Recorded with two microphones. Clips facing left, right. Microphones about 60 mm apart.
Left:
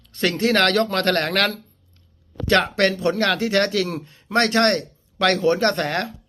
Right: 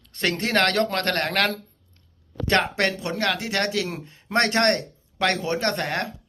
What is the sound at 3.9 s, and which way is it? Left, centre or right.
Speech, right.